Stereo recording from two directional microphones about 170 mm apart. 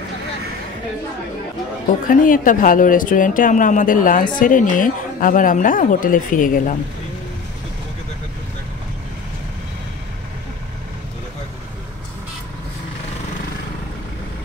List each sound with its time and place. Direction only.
2.0 s speech: 55° left (ahead or behind)